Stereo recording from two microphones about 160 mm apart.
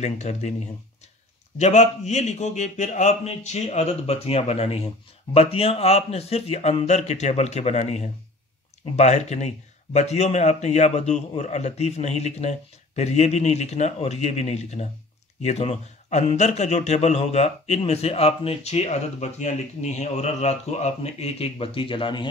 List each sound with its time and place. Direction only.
0.0 s a man's voice: 45° left (ahead or behind)
1.6 s a man's voice: 45° left (ahead or behind)